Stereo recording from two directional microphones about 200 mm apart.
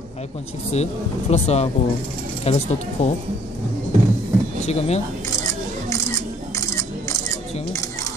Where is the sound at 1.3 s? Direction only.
35° left (ahead or behind).